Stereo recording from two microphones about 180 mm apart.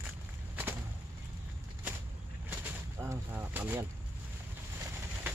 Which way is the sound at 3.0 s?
15° right (ahead or behind).